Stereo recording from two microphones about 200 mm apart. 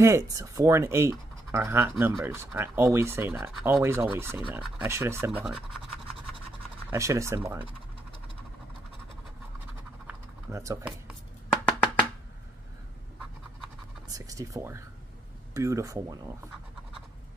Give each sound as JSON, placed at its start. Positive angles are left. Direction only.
{"t": 0.0, "sound": "speech", "side_deg": -15}
{"t": 6.9, "sound": "speech", "side_deg": -15}
{"t": 10.0, "sound": "computer keyboard", "side_deg": -15}
{"t": 14.1, "sound": "speech", "side_deg": -15}